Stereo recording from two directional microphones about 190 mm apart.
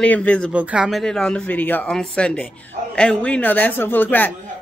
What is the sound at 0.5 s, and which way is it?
Speech, 5° right (ahead or behind).